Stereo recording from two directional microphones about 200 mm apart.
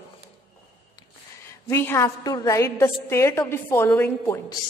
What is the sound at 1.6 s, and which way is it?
A woman's voice, 10° left (ahead or behind).